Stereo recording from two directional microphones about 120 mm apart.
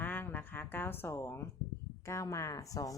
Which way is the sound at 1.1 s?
25° left (ahead or behind).